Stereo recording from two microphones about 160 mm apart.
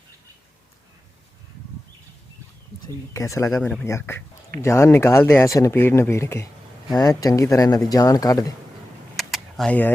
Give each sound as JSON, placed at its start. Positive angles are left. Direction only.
{"t": 2.8, "sound": "speech", "side_deg": 20}
{"t": 3.5, "sound": "speech", "side_deg": 5}
{"t": 3.8, "sound": "speech", "side_deg": 15}
{"t": 9.1, "sound": "vehicle", "side_deg": 0}